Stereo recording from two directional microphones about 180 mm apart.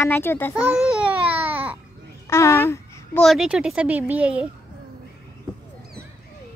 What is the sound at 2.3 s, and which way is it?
Babbling, 15° left (ahead or behind).